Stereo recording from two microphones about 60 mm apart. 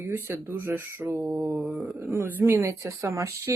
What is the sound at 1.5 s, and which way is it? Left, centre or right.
Mantra, centre.